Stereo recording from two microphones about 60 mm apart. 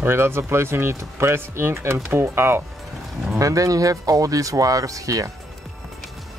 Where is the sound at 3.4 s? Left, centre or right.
Right.